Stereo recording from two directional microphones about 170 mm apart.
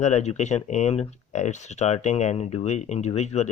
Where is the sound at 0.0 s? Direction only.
40° left (ahead or behind).